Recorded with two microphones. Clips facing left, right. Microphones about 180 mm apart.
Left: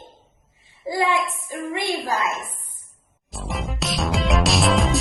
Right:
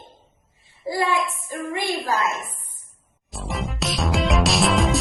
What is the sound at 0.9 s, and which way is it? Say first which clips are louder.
Speech: left 1 dB; 20° left (ahead or behind).